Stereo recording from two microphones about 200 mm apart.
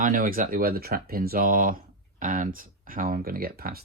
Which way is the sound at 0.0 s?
40° right (ahead or behind).